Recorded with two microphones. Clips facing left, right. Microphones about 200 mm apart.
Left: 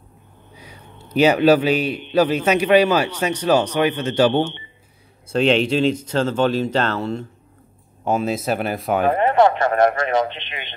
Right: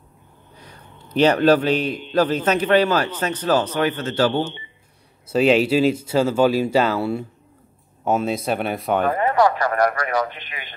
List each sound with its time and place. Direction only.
0.6 s a sound: 10° left (ahead or behind)
2.1 s speech: 10° left (ahead or behind)
5.3 s speech: 5° right (ahead or behind)
9.1 s speech: 25° left (ahead or behind)